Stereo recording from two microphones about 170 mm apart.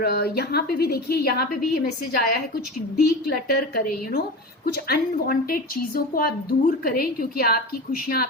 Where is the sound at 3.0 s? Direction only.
65° left (ahead or behind).